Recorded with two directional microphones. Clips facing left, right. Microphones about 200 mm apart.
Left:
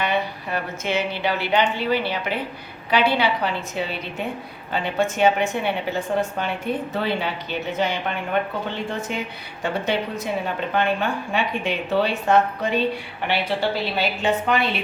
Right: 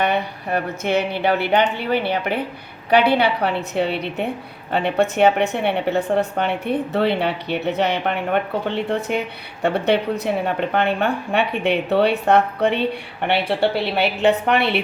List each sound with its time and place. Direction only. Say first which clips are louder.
0.0 s a woman's voice: right 3 dB; 60° right (ahead or behind)